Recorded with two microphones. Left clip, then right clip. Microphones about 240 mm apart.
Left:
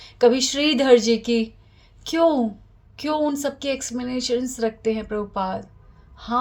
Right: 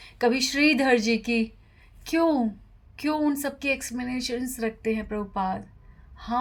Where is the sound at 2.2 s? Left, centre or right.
Right.